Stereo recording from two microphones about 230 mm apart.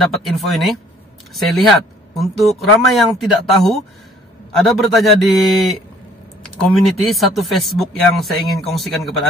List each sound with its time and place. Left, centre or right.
0.0 s speech: centre